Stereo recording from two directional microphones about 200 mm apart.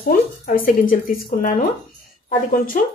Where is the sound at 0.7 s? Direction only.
45° left (ahead or behind).